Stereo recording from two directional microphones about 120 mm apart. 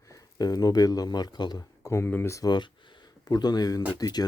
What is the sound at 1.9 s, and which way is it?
Speech, 20° left (ahead or behind).